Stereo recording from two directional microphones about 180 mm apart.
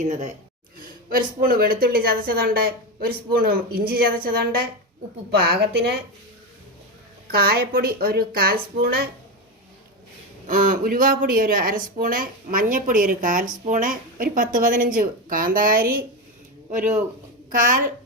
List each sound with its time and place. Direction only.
0.0 s a woman's voice: 40° right (ahead or behind)
1.1 s a woman's voice: 50° right (ahead or behind)
7.3 s a woman's voice: 55° right (ahead or behind)
10.5 s speech: 45° right (ahead or behind)